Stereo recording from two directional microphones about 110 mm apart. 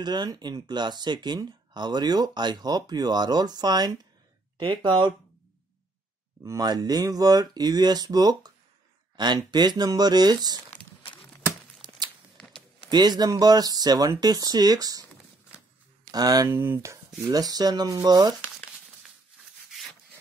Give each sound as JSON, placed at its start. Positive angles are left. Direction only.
{"t": 0.0, "sound": "speech", "side_deg": -40}
{"t": 6.4, "sound": "speech", "side_deg": -35}
{"t": 11.8, "sound": "tearing", "side_deg": -5}
{"t": 12.9, "sound": "speech", "side_deg": -40}
{"t": 16.1, "sound": "speech", "side_deg": -35}
{"t": 16.4, "sound": "speech", "side_deg": -20}
{"t": 17.2, "sound": "speech", "side_deg": -35}